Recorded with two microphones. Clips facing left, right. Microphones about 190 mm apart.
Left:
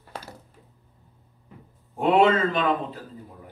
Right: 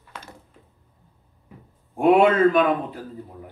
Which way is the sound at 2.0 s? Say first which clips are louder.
Right 3 dB; 10° right (ahead or behind).